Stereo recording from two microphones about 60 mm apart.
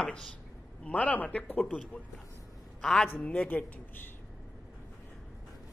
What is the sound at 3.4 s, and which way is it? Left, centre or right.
Speech, left.